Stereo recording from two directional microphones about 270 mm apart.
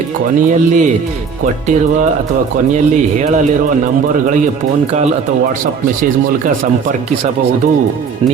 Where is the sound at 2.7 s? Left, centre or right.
Right.